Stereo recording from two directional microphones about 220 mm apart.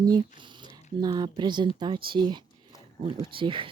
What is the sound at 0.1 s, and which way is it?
Speech, 20° right (ahead or behind).